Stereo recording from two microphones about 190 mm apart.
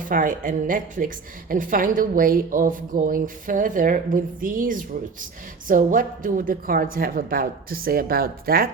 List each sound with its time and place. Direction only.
0.0 s a woman's voice: 45° right (ahead or behind)